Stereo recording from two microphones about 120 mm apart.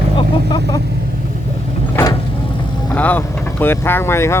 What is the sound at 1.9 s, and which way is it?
Vehicle, 25° left (ahead or behind).